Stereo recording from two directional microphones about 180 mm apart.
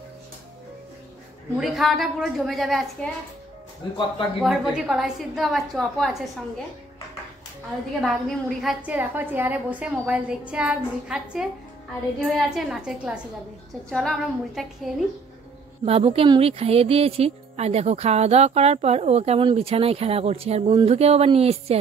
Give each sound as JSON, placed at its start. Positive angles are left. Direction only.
{"t": 1.6, "sound": "a woman's voice", "side_deg": 0}
{"t": 4.4, "sound": "a woman's voice", "side_deg": 0}
{"t": 8.0, "sound": "a woman's voice", "side_deg": 0}
{"t": 8.8, "sound": "a woman's voice", "side_deg": -10}
{"t": 15.8, "sound": "speech", "side_deg": -35}